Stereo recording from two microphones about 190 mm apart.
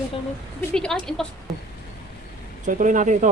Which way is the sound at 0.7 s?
5° left (ahead or behind).